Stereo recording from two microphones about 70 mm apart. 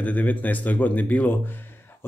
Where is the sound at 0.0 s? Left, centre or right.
Left.